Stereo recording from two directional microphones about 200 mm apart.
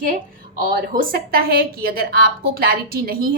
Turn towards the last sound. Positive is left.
turn(degrees=-45)  # may be behind; listen again after turning